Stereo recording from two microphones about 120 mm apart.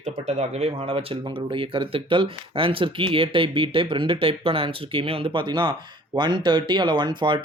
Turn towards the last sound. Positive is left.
turn(degrees=-40)  # may be behind; listen again after turning